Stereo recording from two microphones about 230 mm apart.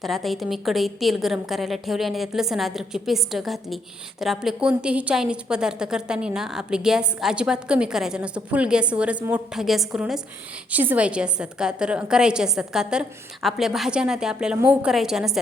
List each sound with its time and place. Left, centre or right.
0.0 s a woman's voice: centre